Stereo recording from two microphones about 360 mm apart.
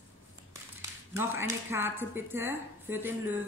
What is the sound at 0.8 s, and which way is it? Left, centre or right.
Speech, centre.